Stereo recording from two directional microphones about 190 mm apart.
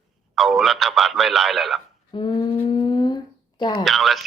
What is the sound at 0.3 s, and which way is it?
Speech, centre (ahead or behind).